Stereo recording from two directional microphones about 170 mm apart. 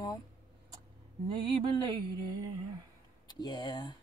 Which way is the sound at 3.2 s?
25° left (ahead or behind).